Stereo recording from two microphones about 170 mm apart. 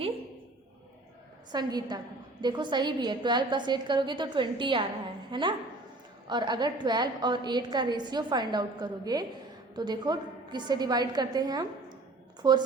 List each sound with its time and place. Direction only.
1.5 s a woman's voice: 25° right (ahead or behind)